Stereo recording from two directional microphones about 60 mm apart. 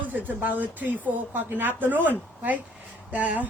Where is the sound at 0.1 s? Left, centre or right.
Right.